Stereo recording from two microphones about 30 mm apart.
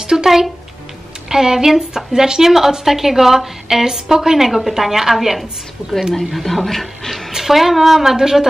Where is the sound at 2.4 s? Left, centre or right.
Centre.